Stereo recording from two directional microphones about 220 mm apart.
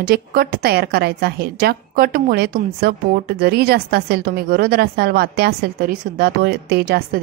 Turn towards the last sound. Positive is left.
turn(degrees=-45)  # may be behind; listen again after turning